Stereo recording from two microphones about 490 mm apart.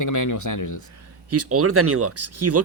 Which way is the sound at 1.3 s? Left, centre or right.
Right.